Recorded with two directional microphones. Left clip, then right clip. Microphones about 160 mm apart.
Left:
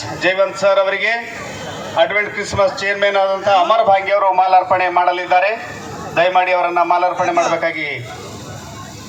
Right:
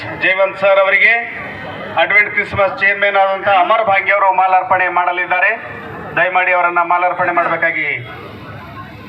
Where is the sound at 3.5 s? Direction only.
25° left (ahead or behind).